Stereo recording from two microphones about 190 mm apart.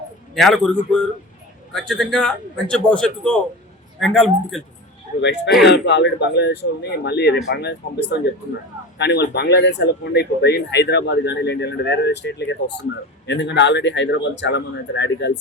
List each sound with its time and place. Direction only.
0.3 s a man's voice: 5° left (ahead or behind)
5.6 s speech: 65° left (ahead or behind)